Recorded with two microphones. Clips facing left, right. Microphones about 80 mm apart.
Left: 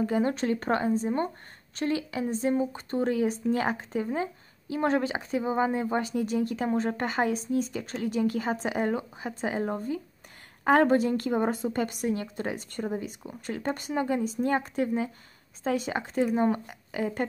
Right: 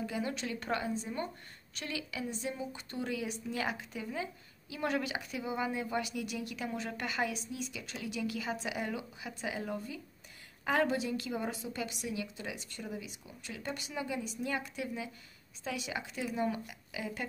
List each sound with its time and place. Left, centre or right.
0.0 s a woman's voice: left